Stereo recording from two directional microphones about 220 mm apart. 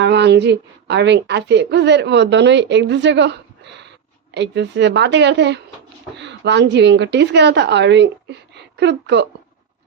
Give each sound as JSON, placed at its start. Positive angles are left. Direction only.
{"t": 0.0, "sound": "a woman's voice", "side_deg": -50}